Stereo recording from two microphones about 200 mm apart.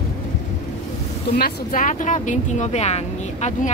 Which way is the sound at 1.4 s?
40° left (ahead or behind).